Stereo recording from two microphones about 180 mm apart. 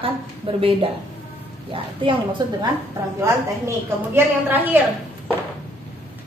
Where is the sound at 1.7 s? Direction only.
30° right (ahead or behind).